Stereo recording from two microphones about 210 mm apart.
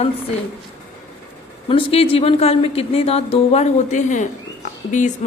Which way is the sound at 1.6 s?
25° left (ahead or behind).